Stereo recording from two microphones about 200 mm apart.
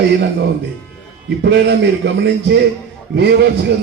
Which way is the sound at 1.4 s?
60° right (ahead or behind).